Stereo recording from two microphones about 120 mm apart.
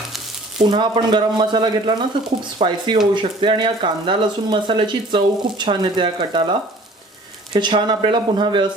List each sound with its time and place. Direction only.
0.6 s speech: 40° right (ahead or behind)